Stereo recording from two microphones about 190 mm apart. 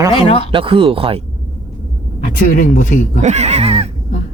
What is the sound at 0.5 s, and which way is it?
Speech, 25° right (ahead or behind).